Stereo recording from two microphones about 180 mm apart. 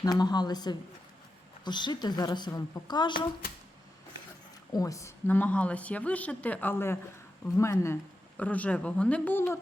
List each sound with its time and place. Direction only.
0.0 s speech: 20° left (ahead or behind)
4.7 s a woman's voice: 20° left (ahead or behind)